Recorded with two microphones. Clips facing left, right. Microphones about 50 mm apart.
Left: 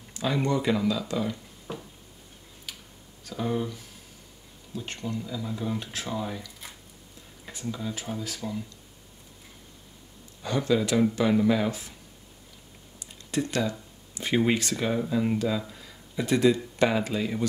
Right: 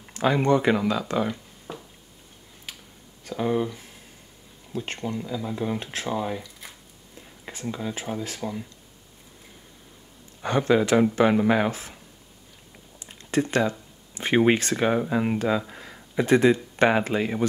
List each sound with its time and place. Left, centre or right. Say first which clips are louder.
0.1 s speech: right 6 dB; right
3.3 s speech: right 4 dB; right
4.7 s speech: right 4 dB; right
5.2 s speech: right 4 dB; right
7.6 s speech: right 3 dB; right
10.4 s speech: right 4 dB; right
13.0 s speech: right 5 dB; right